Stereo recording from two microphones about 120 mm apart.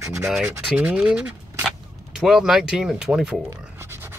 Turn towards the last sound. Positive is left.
turn(degrees=-20)  # may be behind; listen again after turning